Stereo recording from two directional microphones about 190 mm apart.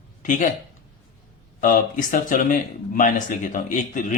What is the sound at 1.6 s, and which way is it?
Speech, 45° left (ahead or behind).